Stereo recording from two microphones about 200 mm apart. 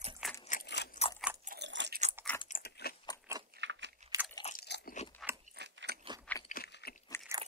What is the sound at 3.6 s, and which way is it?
Chewing, 65° right (ahead or behind).